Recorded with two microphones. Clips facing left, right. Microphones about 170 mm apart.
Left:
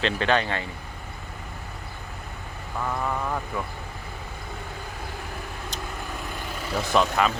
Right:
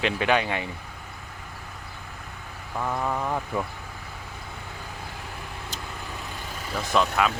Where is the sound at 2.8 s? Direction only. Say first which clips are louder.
Right 1 dB; 10° right (ahead or behind).